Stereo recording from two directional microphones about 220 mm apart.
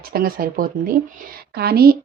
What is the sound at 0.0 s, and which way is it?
Speech, 40° right (ahead or behind).